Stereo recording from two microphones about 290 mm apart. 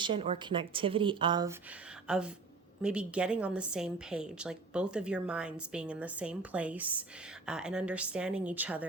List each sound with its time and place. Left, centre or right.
0.0 s speech: centre
2.0 s a woman's voice: centre